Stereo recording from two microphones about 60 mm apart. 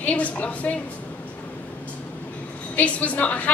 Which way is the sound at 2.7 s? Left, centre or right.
Left.